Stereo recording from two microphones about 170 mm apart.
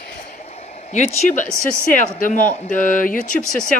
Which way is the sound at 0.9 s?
45° left (ahead or behind).